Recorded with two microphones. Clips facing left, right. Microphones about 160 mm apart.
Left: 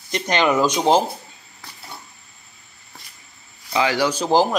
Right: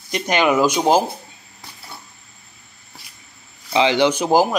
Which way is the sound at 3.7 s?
20° right (ahead or behind).